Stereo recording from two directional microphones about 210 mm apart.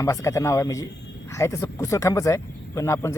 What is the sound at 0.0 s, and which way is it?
Speech, 15° left (ahead or behind).